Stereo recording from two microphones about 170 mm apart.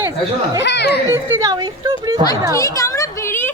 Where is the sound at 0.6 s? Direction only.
85° left.